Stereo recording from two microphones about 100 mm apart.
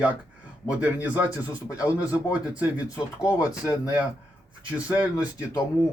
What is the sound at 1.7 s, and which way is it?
Speech, 35° left (ahead or behind).